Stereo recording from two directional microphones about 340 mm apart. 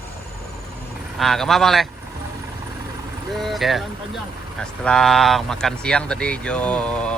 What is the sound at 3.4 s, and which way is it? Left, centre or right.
Speech, centre.